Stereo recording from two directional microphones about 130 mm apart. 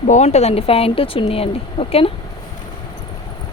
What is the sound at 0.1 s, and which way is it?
Speech, 60° left (ahead or behind).